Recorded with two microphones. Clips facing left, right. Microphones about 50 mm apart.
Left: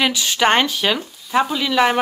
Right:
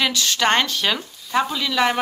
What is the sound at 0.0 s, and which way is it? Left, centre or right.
Speech, centre.